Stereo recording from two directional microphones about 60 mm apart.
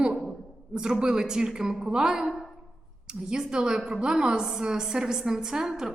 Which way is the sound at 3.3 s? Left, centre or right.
Centre.